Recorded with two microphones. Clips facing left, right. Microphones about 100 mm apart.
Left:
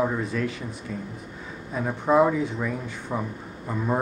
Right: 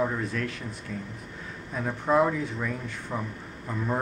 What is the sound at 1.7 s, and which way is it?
Speech, 5° left (ahead or behind).